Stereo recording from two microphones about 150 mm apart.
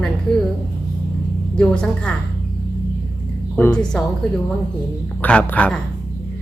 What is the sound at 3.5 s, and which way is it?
Speech, 10° left (ahead or behind).